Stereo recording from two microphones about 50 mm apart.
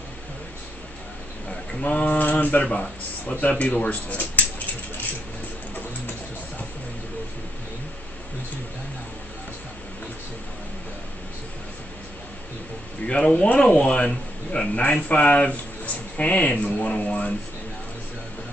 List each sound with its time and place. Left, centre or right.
1.8 s speech: left
13.0 s speech: centre